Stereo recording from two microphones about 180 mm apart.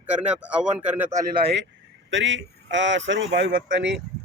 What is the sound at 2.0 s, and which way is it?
Speech, 90° right.